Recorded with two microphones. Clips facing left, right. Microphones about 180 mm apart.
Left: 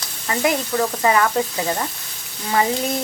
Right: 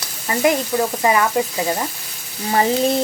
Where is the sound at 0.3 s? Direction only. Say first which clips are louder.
Right 3 dB; 15° right (ahead or behind).